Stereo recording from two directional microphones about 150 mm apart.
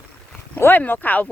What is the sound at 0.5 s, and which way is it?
Speech, 10° left (ahead or behind).